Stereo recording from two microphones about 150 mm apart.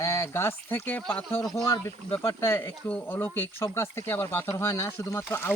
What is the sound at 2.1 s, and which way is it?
Speech, 15° left (ahead or behind).